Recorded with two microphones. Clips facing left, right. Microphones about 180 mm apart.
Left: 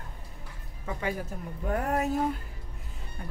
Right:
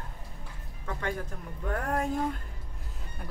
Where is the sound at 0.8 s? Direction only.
5° left (ahead or behind).